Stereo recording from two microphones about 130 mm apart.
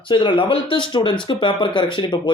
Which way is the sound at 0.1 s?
40° left (ahead or behind).